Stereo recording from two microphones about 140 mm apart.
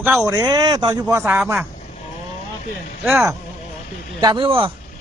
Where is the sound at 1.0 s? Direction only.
15° right (ahead or behind).